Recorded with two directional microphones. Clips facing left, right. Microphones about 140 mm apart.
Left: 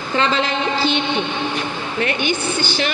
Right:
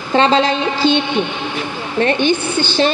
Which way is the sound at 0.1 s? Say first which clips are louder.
Right 7 dB; 30° right (ahead or behind).